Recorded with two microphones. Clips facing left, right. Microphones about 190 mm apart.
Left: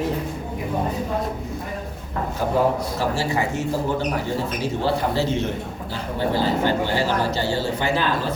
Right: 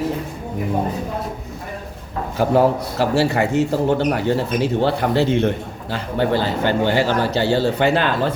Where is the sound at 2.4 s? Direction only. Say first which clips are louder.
Right 5 dB; 75° right (ahead or behind).